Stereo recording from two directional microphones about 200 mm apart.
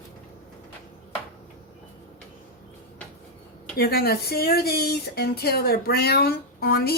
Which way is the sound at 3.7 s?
50° left (ahead or behind).